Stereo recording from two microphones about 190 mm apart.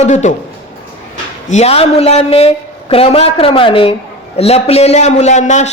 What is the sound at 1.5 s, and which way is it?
A man's voice, 35° left (ahead or behind).